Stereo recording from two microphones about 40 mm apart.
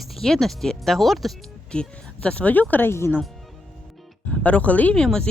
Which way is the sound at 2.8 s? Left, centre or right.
Left.